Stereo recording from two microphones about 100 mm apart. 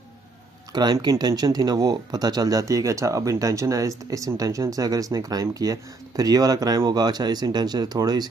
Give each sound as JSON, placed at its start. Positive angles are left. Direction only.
{"t": 0.7, "sound": "speech", "side_deg": -45}